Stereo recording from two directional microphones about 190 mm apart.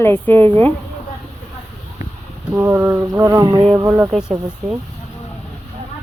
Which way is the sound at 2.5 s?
15° right (ahead or behind).